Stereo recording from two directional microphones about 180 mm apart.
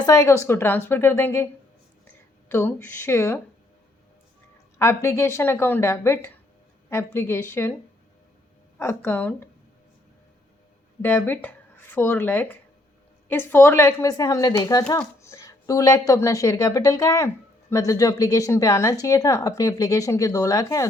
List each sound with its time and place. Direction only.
0.0 s a woman's voice: 20° left (ahead or behind)
2.5 s a woman's voice: 15° left (ahead or behind)
4.8 s a woman's voice: 15° left (ahead or behind)
8.8 s a woman's voice: 15° left (ahead or behind)
11.0 s a woman's voice: 10° left (ahead or behind)